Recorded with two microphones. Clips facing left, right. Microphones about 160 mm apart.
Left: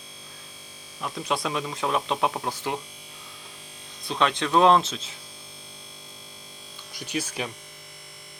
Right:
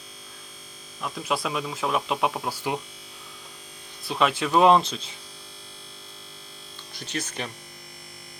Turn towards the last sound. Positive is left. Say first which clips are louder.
# left 2 dB
turn(degrees=10)  # may be behind; listen again after turning